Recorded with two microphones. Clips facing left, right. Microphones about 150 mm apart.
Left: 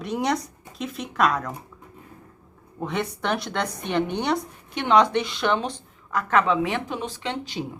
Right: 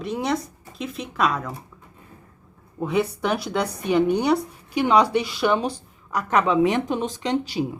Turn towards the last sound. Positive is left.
turn(degrees=-15)  # may be behind; listen again after turning